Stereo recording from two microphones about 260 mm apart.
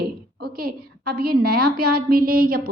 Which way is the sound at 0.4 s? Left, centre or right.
Right.